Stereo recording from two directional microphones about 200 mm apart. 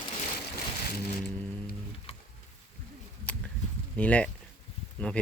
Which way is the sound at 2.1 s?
30° left (ahead or behind).